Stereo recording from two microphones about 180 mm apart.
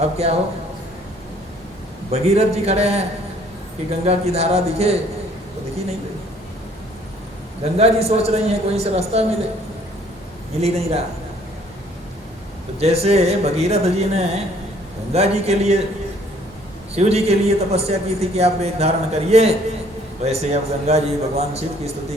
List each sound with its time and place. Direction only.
0.2 s a man's voice: 35° right (ahead or behind)
2.0 s a man's voice: 35° right (ahead or behind)
7.6 s a man's voice: 35° right (ahead or behind)
10.6 s a man's voice: 35° right (ahead or behind)
12.8 s a man's voice: 35° right (ahead or behind)
16.9 s a man's voice: 35° right (ahead or behind)